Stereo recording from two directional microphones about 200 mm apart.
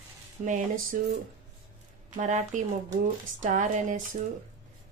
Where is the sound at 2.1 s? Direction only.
40° right (ahead or behind).